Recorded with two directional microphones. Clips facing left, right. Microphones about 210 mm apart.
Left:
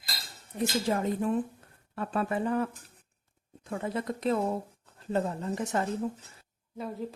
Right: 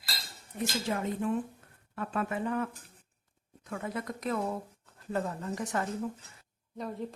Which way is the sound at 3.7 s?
30° left (ahead or behind).